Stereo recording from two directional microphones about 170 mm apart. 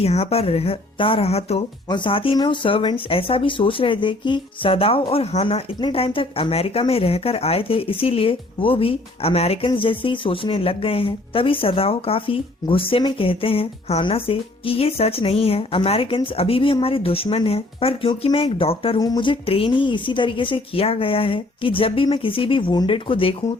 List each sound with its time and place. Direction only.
0.0 s speech: 40° left (ahead or behind)